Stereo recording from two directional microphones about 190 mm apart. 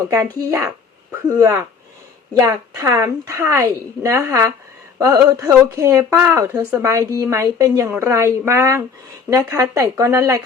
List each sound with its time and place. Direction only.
0.3 s a woman's voice: 15° right (ahead or behind)